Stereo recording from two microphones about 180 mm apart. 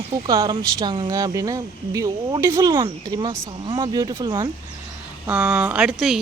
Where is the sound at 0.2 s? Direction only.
20° right (ahead or behind).